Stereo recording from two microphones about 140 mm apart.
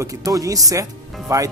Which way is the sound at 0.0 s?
25° right (ahead or behind).